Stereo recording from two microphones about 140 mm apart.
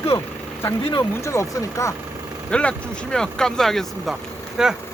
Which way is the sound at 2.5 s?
5° left (ahead or behind).